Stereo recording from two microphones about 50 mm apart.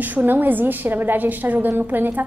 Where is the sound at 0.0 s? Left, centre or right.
Right.